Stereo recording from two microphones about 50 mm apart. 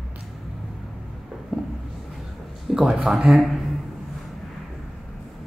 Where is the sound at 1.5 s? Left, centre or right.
Right.